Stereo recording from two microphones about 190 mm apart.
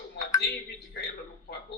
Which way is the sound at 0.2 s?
60° left (ahead or behind).